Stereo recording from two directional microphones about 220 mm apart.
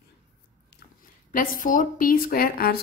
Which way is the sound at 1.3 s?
40° left (ahead or behind).